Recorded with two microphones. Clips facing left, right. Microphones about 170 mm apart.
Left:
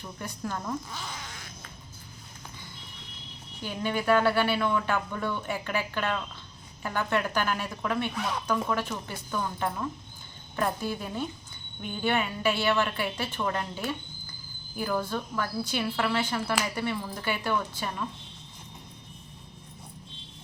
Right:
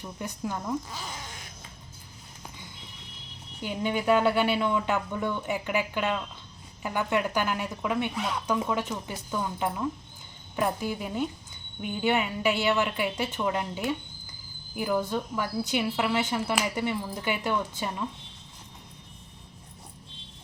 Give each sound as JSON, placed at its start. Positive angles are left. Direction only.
{"t": 0.0, "sound": "speech", "side_deg": -15}
{"t": 3.6, "sound": "speech", "side_deg": -20}